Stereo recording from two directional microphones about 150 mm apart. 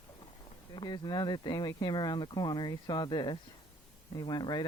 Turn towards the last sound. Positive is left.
turn(degrees=30)  # may be behind; listen again after turning